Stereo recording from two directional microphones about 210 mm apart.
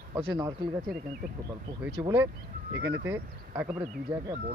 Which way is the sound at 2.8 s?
60° right (ahead or behind).